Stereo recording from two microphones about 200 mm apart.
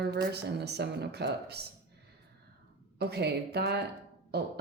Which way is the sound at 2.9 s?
55° right (ahead or behind).